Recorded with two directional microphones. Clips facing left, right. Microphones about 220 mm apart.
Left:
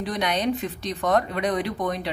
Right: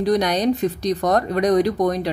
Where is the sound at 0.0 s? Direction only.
40° right (ahead or behind).